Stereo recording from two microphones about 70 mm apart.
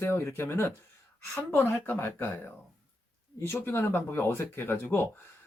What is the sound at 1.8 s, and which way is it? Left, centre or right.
Speech, left.